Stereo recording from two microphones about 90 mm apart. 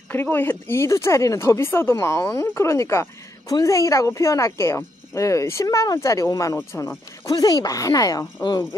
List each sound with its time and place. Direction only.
0.1 s speech: 25° left (ahead or behind)
7.2 s speech: 50° left (ahead or behind)